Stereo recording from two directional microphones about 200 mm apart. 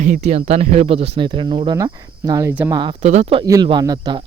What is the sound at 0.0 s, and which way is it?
Speech, 35° right (ahead or behind).